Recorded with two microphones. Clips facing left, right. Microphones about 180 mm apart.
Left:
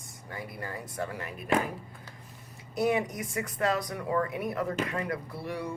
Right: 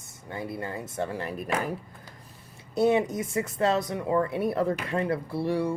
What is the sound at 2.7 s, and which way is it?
Speech, 25° right (ahead or behind).